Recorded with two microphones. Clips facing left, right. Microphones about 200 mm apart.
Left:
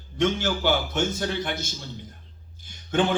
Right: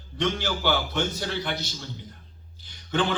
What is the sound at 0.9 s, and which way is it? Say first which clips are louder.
Speech: left 2 dB; 50° left (ahead or behind).